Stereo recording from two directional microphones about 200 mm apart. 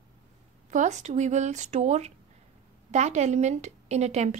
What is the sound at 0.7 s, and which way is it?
A woman's voice, 35° right (ahead or behind).